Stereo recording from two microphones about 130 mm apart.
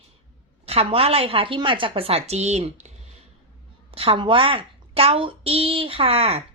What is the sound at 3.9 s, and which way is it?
A woman's voice, 45° right (ahead or behind).